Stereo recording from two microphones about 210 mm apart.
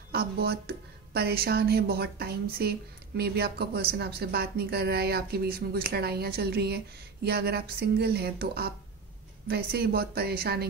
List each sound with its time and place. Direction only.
0.1 s a woman's voice: 50° right (ahead or behind)